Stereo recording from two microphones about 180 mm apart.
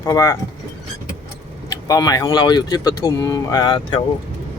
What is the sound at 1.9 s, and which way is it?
Speech, 20° left (ahead or behind).